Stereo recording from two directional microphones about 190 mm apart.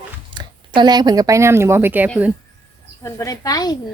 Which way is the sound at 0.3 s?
25° right (ahead or behind).